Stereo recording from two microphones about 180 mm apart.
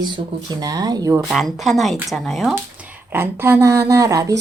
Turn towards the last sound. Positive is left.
turn(degrees=-20)  # may be behind; listen again after turning